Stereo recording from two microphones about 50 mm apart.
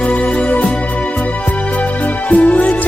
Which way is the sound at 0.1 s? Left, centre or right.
Left.